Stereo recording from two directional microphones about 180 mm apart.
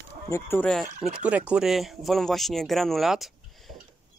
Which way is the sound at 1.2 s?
5° right (ahead or behind).